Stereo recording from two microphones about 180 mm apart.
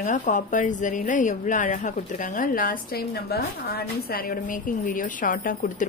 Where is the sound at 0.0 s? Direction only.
45° left (ahead or behind).